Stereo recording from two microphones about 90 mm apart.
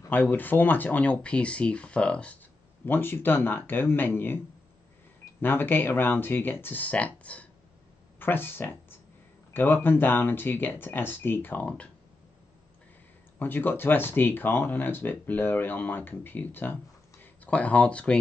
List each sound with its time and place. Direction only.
0.1 s speech: 20° left (ahead or behind)
2.8 s speech: 25° left (ahead or behind)
5.4 s speech: 20° left (ahead or behind)
13.4 s speech: 20° left (ahead or behind)